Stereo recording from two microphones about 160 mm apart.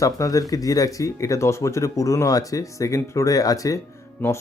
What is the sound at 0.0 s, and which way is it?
Speech, 20° left (ahead or behind).